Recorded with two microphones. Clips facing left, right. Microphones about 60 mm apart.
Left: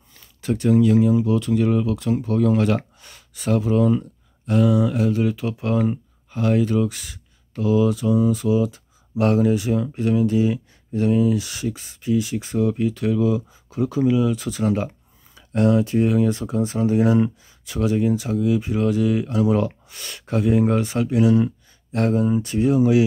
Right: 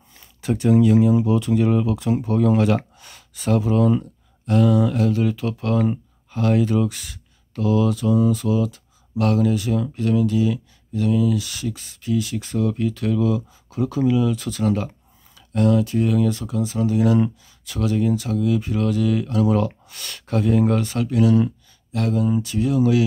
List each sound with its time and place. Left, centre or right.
0.4 s speech: centre
21.9 s speech: left